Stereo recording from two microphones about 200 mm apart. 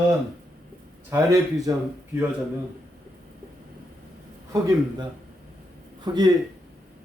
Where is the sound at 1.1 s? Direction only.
15° right (ahead or behind).